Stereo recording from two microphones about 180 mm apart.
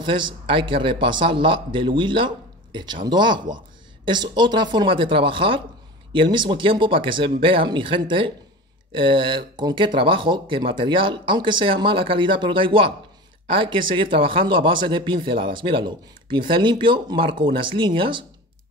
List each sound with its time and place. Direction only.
0.0 s speech: 25° right (ahead or behind)